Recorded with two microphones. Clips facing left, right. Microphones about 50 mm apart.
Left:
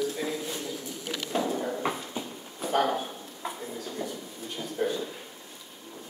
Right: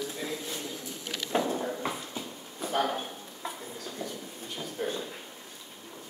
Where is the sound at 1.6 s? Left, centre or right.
Centre.